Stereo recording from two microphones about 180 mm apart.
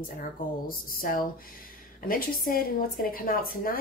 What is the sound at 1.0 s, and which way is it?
A woman's voice, 50° left (ahead or behind).